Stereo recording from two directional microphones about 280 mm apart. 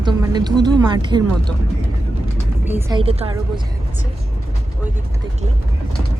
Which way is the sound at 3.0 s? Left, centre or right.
Centre.